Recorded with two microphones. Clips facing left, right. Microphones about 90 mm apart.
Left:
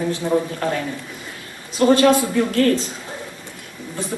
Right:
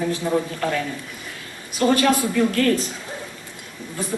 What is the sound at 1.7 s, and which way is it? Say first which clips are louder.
Speech: left 4 dB; 25° left (ahead or behind).